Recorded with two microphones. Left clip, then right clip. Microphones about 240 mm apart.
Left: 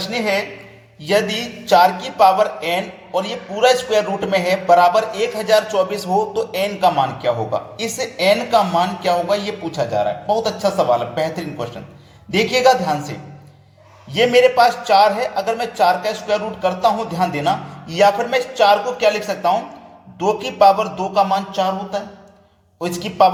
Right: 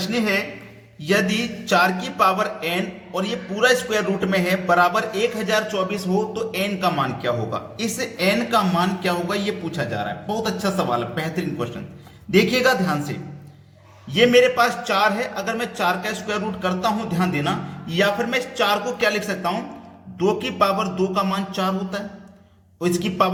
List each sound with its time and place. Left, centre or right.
0.0 s music: centre
21.3 s a sound: centre
22.8 s music: centre